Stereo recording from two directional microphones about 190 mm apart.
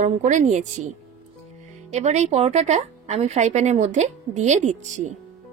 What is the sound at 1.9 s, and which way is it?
A woman's voice, 35° right (ahead or behind).